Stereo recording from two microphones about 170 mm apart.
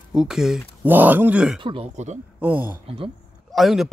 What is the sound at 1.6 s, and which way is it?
Speech, 35° right (ahead or behind).